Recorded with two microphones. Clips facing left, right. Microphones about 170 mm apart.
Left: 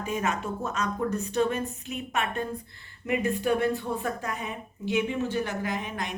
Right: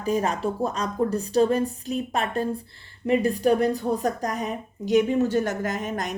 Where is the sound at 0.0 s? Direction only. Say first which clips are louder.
Right 5 dB; 35° right (ahead or behind).